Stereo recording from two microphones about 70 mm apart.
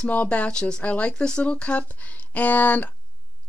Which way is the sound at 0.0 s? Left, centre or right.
Centre.